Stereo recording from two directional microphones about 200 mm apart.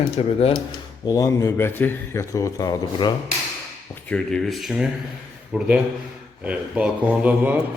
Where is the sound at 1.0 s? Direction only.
15° left (ahead or behind).